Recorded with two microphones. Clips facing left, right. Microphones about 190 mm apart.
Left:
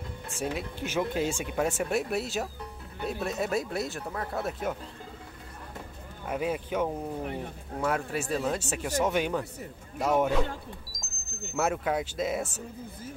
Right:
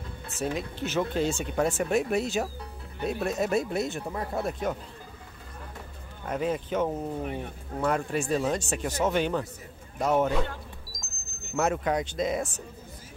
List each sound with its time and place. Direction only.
0.3 s speech: 10° left (ahead or behind)
3.9 s speech: 15° right (ahead or behind)
4.4 s speech: 5° left (ahead or behind)
6.2 s speech: 10° left (ahead or behind)
10.9 s music: centre (ahead or behind)
11.5 s speech: 5° left (ahead or behind)